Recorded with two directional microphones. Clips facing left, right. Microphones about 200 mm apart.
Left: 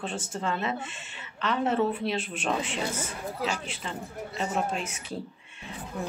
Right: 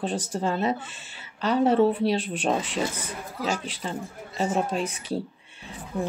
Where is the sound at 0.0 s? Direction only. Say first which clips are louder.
Right 5 dB; 35° right (ahead or behind).